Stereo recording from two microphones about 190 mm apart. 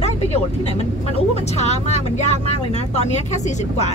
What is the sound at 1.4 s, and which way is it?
Speech, 35° left (ahead or behind).